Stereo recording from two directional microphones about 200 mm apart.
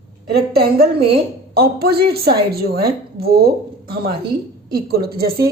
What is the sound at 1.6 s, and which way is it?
Speech, 50° right (ahead or behind).